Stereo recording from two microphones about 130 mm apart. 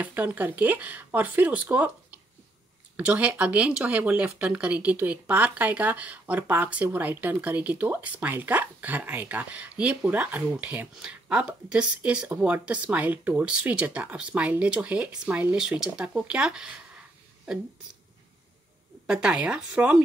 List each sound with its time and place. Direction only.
0.0 s speech: 10° right (ahead or behind)
19.0 s speech: 10° right (ahead or behind)